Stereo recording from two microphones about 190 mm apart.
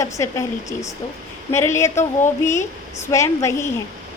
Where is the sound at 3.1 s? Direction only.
15° left (ahead or behind).